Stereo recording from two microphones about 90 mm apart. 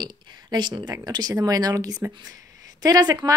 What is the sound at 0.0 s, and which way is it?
A woman's voice, 50° right (ahead or behind).